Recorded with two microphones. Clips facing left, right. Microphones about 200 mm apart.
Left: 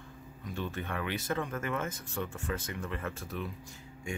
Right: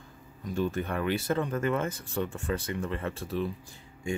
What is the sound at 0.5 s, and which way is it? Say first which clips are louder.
Speech: right 7 dB; 40° right (ahead or behind).